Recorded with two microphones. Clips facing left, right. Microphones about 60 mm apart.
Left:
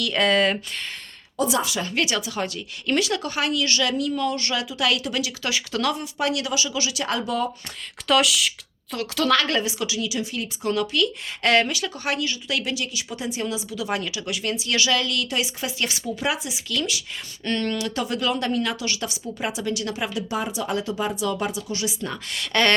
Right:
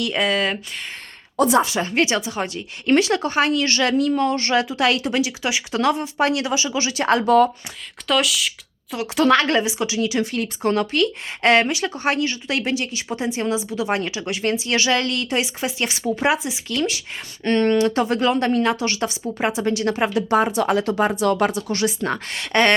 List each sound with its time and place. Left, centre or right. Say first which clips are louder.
0.2 s speech: left 2 dB; centre
1.5 s speech: right 6 dB; right
8.0 s speech: even; centre
9.0 s speech: right 5 dB; right
10.1 s speech: right 6 dB; right
11.5 s speech: right 3 dB; right
22.3 s speech: right 3 dB; right